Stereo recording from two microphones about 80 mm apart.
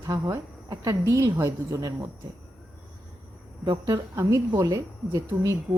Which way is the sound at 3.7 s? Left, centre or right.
Right.